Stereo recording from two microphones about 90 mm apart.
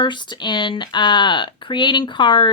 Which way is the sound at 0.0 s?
60° left (ahead or behind).